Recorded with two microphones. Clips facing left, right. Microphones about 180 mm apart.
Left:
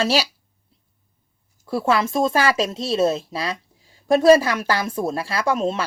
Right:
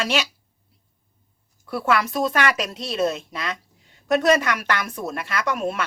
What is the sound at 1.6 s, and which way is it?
Speech, 25° left (ahead or behind).